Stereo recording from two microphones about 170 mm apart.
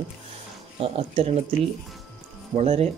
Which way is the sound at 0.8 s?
35° right (ahead or behind).